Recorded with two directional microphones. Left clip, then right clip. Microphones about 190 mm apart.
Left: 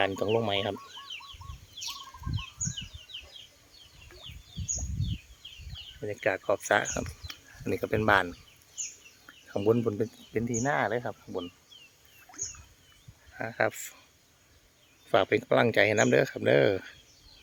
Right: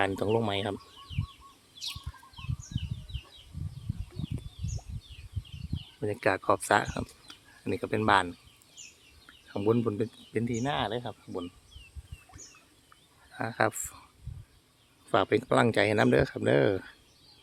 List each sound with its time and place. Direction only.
0.0 s speech: 5° right (ahead or behind)
6.0 s speech: 25° right (ahead or behind)
7.6 s speech: 10° left (ahead or behind)
13.3 s speech: 15° right (ahead or behind)
15.1 s speech: centre (ahead or behind)